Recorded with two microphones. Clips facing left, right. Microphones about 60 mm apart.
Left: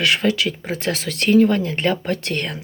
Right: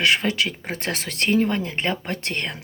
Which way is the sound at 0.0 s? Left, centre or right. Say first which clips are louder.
Left 2 dB; right.